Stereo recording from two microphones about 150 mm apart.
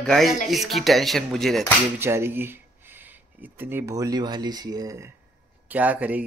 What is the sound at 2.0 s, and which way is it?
Speech, 15° right (ahead or behind).